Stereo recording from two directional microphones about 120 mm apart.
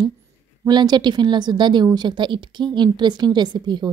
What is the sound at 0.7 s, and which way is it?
A woman's voice, 35° right (ahead or behind).